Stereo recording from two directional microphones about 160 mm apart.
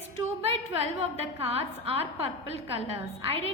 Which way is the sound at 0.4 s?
40° right (ahead or behind).